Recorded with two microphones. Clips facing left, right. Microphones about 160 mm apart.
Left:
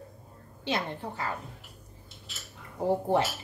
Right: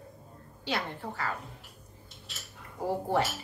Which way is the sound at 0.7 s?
20° left (ahead or behind).